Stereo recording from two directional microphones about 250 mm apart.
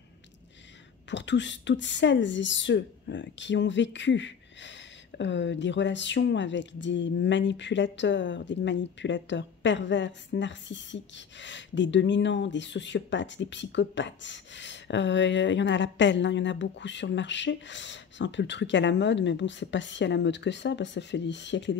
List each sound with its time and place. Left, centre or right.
1.1 s speech: left